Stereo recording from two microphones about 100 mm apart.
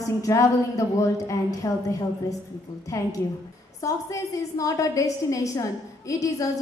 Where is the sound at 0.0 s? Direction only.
35° left (ahead or behind).